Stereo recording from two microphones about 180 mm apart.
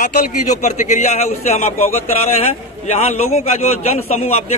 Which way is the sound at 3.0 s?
35° left (ahead or behind).